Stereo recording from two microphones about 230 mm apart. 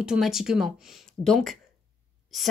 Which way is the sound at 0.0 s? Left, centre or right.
Centre.